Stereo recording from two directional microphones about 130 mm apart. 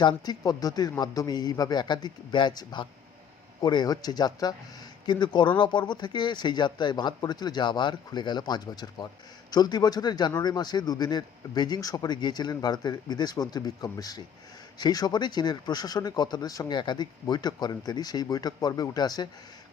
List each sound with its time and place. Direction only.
0.0 s speech: 35° left (ahead or behind)